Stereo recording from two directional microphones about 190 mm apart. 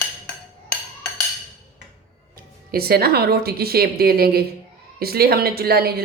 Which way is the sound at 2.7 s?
55° right (ahead or behind).